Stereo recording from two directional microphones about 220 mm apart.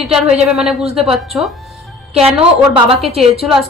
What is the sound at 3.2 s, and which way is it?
Speech, centre (ahead or behind).